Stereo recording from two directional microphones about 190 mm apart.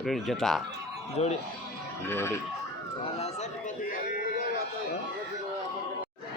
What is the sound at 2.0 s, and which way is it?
Speech, 15° left (ahead or behind).